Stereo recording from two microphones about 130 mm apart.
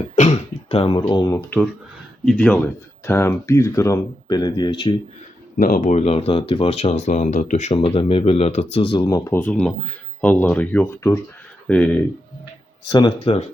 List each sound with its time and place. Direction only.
0.2 s throat clearing: 55° left (ahead or behind)
0.9 s speech: 30° left (ahead or behind)
2.2 s speech: 10° left (ahead or behind)
3.1 s speech: 20° left (ahead or behind); by 4.9 s 40° left (ahead or behind)
5.5 s speech: 90° left; by 7.7 s 65° left (ahead or behind)
7.7 s speech: 45° left (ahead or behind)
9.0 s speech: 25° left (ahead or behind)
9.4 s speech: 10° left (ahead or behind)
12.9 s speech: 35° left (ahead or behind)